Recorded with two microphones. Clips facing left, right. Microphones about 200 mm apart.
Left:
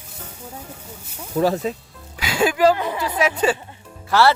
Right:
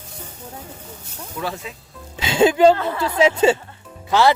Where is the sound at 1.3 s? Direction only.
40° left (ahead or behind).